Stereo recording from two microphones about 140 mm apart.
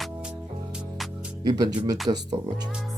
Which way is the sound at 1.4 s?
30° right (ahead or behind).